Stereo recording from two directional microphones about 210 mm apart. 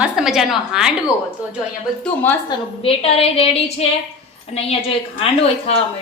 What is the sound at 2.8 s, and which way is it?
A woman's voice, 25° left (ahead or behind).